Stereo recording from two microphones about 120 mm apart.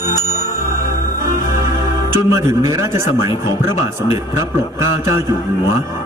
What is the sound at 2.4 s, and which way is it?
Speech, 25° right (ahead or behind).